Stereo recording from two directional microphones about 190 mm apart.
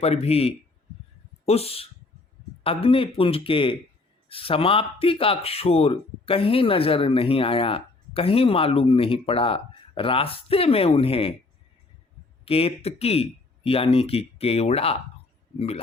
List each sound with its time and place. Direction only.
0.0 s speech: 35° left (ahead or behind)
12.5 s speech: 30° left (ahead or behind)